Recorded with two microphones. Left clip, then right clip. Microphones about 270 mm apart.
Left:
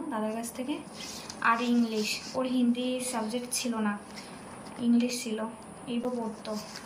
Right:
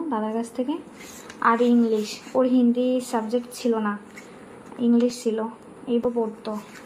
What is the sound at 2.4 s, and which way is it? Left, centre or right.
Speech, centre.